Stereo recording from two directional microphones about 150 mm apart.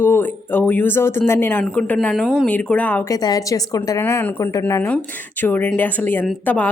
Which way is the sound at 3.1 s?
25° left (ahead or behind).